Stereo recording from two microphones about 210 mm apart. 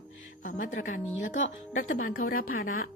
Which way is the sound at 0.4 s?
40° left (ahead or behind).